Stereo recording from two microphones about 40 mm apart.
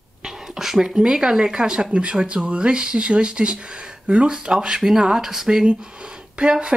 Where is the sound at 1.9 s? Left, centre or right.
Right.